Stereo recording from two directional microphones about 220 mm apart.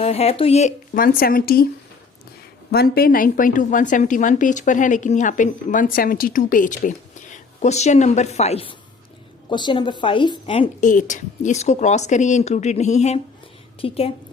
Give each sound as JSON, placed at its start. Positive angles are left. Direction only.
{"t": 0.0, "sound": "a woman's voice", "side_deg": 30}
{"t": 2.7, "sound": "a woman's voice", "side_deg": 45}
{"t": 10.8, "sound": "a woman's voice", "side_deg": 35}